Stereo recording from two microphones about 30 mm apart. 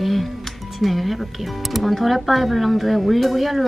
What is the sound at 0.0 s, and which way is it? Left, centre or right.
Music, centre.